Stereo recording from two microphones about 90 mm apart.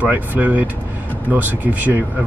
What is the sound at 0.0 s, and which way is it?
Speech, 20° right (ahead or behind).